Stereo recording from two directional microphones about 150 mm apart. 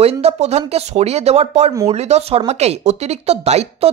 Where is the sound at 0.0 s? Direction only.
45° right (ahead or behind).